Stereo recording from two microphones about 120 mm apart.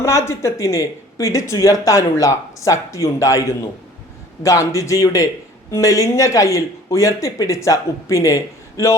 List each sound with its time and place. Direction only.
0.0 s speech: 25° left (ahead or behind)